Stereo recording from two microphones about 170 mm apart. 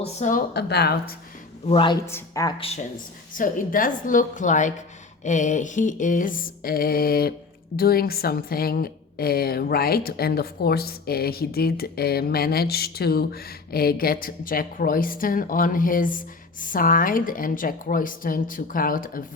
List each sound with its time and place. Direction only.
0.0 s a sound: 45° left (ahead or behind)
0.5 s speech: 75° left (ahead or behind)
1.6 s speech: 30° left (ahead or behind)
2.0 s speech: 15° left (ahead or behind)
2.6 s speech: 35° left (ahead or behind)
3.3 s a sound: 55° left (ahead or behind)
7.8 s a woman's voice: 60° left (ahead or behind)